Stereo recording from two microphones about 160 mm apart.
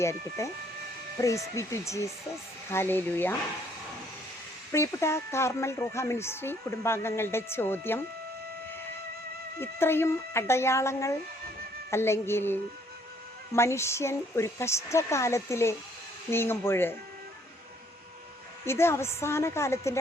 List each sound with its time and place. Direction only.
0.0 s speech: 20° left (ahead or behind)
4.7 s speech: 15° left (ahead or behind)
9.6 s speech: 15° left (ahead or behind)
18.6 s speech: 15° left (ahead or behind)